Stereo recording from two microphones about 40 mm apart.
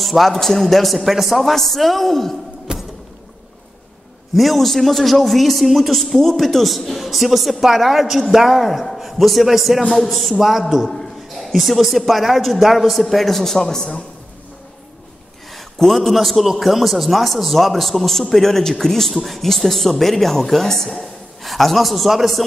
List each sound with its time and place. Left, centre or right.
0.0 s a man's voice: centre
2.7 s music: right
4.4 s a man's voice: centre
10.9 s a sound: centre
11.5 s a man's voice: centre
15.5 s a man's voice: centre